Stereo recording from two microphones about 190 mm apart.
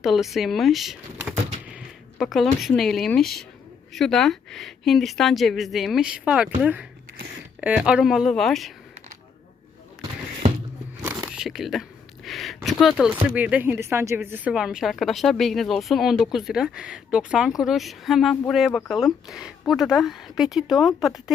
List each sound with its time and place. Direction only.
0.0 s a woman's voice: centre (ahead or behind)
11.0 s biting: 15° right (ahead or behind)
11.3 s a sound: centre (ahead or behind)
13.3 s a woman's voice: 10° right (ahead or behind)